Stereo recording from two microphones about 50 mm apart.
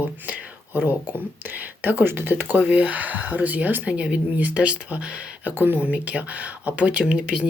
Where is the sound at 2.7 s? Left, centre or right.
Right.